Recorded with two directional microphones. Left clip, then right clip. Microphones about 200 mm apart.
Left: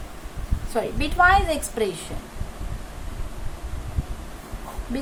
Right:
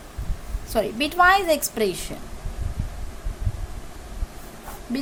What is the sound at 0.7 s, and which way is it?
A woman's voice, 50° right (ahead or behind).